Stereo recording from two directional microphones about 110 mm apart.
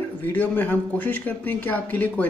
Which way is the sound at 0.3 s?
15° left (ahead or behind).